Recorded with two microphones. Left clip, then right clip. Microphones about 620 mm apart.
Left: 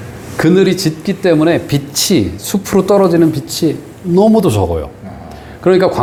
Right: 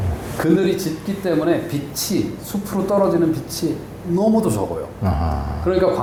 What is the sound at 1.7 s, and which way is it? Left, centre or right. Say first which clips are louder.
Speech: left 9 dB; left.